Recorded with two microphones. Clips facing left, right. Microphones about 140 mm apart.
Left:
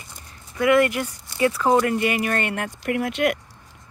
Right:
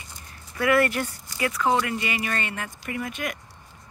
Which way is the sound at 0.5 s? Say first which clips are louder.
Left 3 dB; 15° left (ahead or behind).